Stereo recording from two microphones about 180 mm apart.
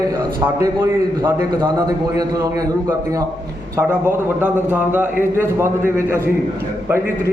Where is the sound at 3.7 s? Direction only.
10° right (ahead or behind).